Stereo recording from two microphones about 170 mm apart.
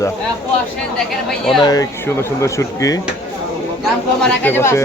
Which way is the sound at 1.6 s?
20° left (ahead or behind).